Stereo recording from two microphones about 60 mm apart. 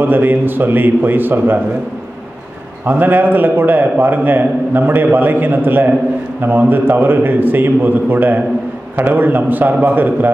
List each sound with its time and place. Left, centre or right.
0.0 s a man's voice: right
2.8 s a man's voice: right